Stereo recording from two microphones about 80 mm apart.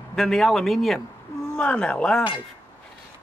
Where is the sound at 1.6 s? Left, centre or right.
Centre.